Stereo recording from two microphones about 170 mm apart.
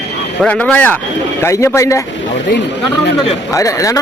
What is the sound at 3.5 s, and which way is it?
Speech, 20° left (ahead or behind).